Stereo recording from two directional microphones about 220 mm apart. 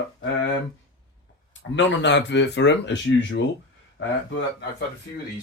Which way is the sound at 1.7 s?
55° left (ahead or behind).